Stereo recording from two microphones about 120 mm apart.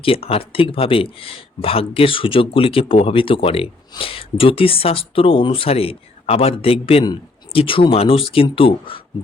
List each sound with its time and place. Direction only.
0.0 s speech: 50° left (ahead or behind)